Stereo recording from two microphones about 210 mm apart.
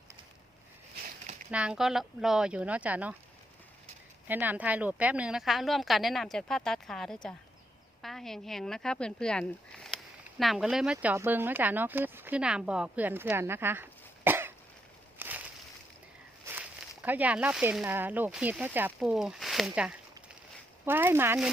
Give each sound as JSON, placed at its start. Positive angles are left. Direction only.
{"t": 1.5, "sound": "a woman's voice", "side_deg": -5}
{"t": 4.3, "sound": "a woman's voice", "side_deg": -10}
{"t": 15.2, "sound": "a sound", "side_deg": -10}
{"t": 16.5, "sound": "speech", "side_deg": -10}